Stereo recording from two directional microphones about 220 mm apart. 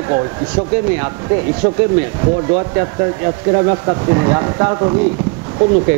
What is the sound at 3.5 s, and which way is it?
Speech, 20° right (ahead or behind).